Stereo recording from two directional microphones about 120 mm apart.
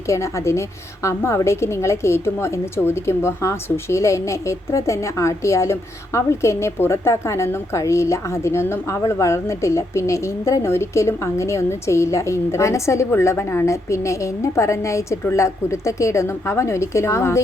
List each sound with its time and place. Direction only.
0.1 s a woman's voice: 25° left (ahead or behind)